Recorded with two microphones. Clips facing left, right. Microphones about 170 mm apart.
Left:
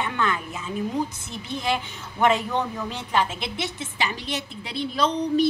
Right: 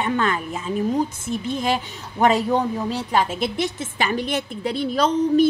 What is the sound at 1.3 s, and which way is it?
Speech, 40° right (ahead or behind).